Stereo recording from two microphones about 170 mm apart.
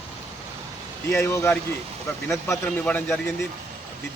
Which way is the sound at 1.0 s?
15° left (ahead or behind).